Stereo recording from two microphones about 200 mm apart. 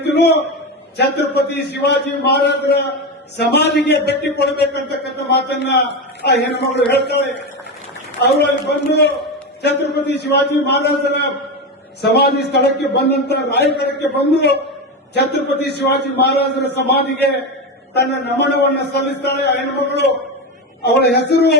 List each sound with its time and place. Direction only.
0.0 s a sound: 55° left (ahead or behind)
0.9 s a man's voice: 55° left (ahead or behind)
8.2 s a man's voice: 55° left (ahead or behind)